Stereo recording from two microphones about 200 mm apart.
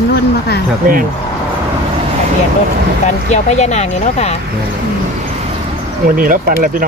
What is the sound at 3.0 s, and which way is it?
Speech, 35° left (ahead or behind).